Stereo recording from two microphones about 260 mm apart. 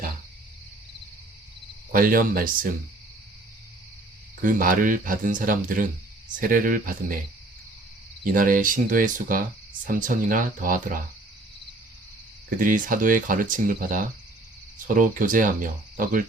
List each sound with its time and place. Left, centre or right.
1.9 s speech: right
4.4 s speech: right
8.2 s speech: right
12.5 s speech: right